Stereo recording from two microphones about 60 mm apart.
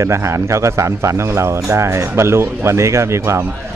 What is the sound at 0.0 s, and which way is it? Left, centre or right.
Speech, right.